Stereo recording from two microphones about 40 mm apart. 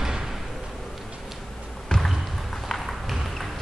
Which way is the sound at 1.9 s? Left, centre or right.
Centre.